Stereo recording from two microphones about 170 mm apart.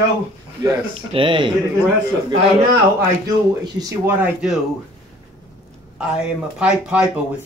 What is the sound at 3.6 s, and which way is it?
Speech, 20° right (ahead or behind).